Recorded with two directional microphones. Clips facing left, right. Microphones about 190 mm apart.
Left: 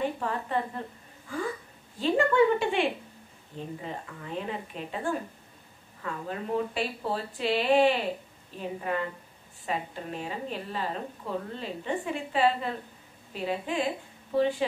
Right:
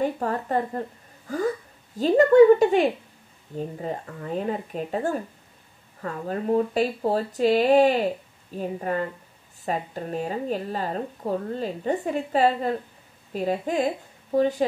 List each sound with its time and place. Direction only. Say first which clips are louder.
0.0 s a woman's voice: right 5 dB; 40° right (ahead or behind)